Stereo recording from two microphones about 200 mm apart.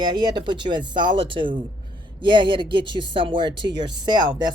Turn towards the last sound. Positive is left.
turn(degrees=-20)  # may be behind; listen again after turning